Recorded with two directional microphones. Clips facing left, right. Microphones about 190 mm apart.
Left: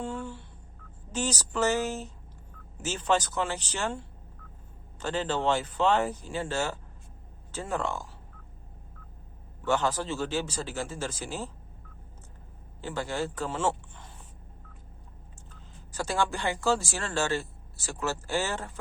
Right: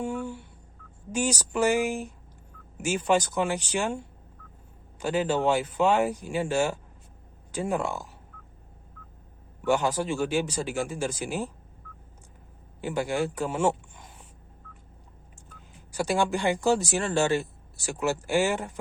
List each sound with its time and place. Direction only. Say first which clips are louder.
0.0 s speech: right 4 dB; 15° right (ahead or behind)
9.6 s speech: right 3 dB; 10° right (ahead or behind)
12.8 s speech: right 4 dB; 15° right (ahead or behind)
15.4 s speech: right 2 dB; 15° right (ahead or behind)